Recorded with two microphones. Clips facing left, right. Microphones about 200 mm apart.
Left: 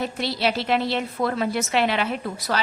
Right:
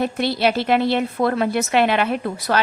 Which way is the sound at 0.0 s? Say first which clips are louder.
Right 5 dB; 55° right (ahead or behind).